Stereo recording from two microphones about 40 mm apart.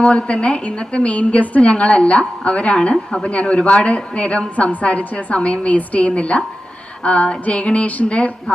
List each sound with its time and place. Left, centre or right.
0.0 s a woman's voice: left
2.9 s a woman's voice: centre
3.2 s a woman's voice: left